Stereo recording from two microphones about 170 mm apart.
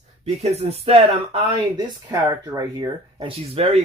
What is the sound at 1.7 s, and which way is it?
Speech, 20° right (ahead or behind).